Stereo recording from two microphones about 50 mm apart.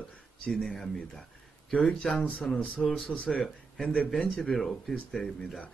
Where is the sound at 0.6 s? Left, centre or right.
Centre; by 3.4 s left.